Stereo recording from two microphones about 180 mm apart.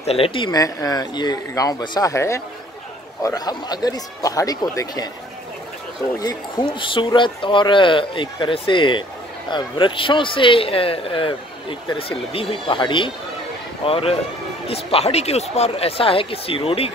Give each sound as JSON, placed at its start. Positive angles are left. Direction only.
{"t": 0.0, "sound": "speech", "side_deg": 35}
{"t": 6.1, "sound": "speech", "side_deg": 25}